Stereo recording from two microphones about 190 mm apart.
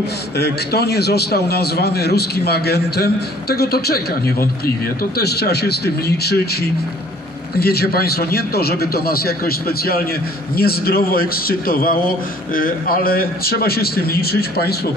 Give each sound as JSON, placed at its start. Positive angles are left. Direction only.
{"t": 0.4, "sound": "a man's voice", "side_deg": 60}
{"t": 5.2, "sound": "a man's voice", "side_deg": 60}
{"t": 10.5, "sound": "a man's voice", "side_deg": 55}